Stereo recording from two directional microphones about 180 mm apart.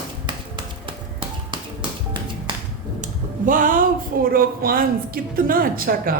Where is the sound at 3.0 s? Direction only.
50° right (ahead or behind).